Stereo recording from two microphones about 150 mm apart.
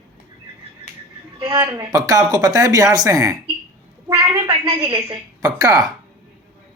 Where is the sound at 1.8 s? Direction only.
25° right (ahead or behind).